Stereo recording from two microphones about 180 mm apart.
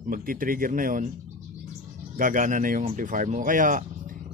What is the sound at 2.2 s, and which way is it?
Speech, 45° right (ahead or behind).